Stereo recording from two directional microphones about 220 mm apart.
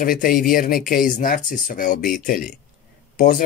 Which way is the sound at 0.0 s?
40° left (ahead or behind).